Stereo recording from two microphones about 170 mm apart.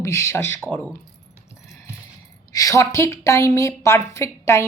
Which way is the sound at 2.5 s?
20° left (ahead or behind).